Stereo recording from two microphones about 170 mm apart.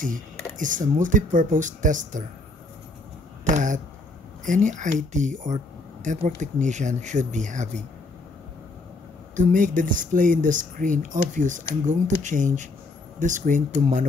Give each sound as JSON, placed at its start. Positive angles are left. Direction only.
{"t": 0.6, "sound": "speech", "side_deg": -50}
{"t": 3.4, "sound": "speech", "side_deg": -45}
{"t": 9.3, "sound": "speech", "side_deg": -50}